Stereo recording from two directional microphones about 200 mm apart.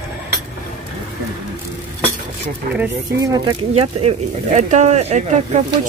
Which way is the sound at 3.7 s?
30° right (ahead or behind).